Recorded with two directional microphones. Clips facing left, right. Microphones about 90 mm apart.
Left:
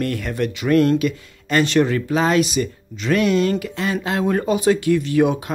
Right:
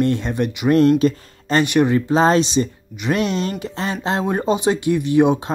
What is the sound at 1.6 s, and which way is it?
Speech, 20° right (ahead or behind).